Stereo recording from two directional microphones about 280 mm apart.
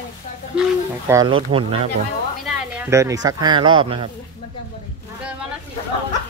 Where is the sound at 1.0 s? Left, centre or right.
Centre.